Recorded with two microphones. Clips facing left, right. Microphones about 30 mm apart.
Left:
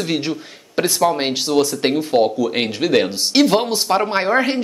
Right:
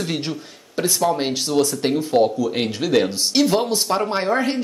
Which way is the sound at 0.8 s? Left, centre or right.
Left.